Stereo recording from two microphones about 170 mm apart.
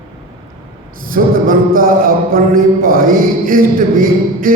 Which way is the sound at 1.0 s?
55° right (ahead or behind).